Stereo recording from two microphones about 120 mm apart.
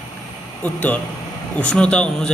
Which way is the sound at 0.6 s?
10° left (ahead or behind).